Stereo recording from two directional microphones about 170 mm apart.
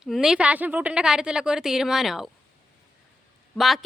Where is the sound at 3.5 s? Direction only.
Centre (ahead or behind).